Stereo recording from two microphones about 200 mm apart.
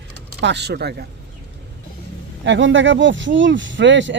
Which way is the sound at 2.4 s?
65° right (ahead or behind).